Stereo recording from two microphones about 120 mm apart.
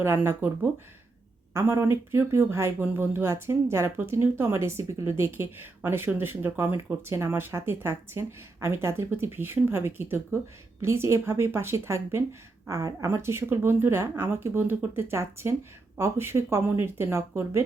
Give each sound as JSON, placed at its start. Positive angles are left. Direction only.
{"t": 0.0, "sound": "speech", "side_deg": -20}